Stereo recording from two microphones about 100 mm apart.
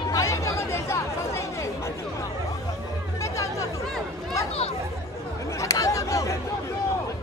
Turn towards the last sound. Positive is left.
turn(degrees=35)  # may be behind; listen again after turning